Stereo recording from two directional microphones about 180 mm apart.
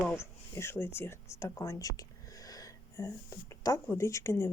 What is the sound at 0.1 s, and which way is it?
Speech, 15° left (ahead or behind).